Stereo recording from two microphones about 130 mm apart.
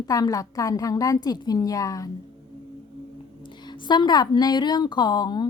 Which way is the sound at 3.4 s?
35° left (ahead or behind).